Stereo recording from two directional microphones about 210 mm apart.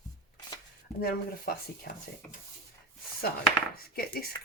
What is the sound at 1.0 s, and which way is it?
A woman's voice, 45° left (ahead or behind).